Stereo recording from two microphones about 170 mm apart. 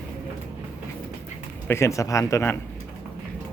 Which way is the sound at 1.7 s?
15° left (ahead or behind).